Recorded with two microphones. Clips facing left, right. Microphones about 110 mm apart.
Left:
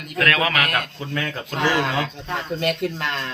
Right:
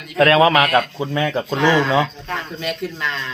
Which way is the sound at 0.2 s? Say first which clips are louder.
Right 8 dB; 30° right (ahead or behind).